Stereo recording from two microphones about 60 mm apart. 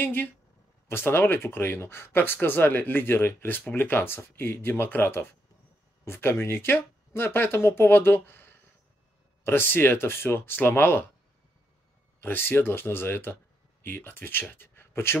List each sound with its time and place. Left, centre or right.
0.0 s speech: left
12.2 s speech: left